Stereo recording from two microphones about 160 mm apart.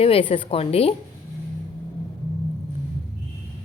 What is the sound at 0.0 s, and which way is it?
Speech, 35° left (ahead or behind).